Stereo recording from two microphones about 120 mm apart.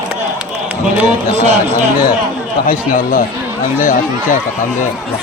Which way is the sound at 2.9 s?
90° left.